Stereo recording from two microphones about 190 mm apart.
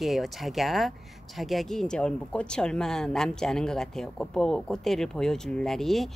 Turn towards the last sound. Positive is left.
turn(degrees=0)  # may be behind; listen again after turning